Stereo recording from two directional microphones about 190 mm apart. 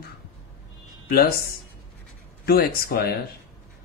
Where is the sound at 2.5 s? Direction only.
55° left (ahead or behind).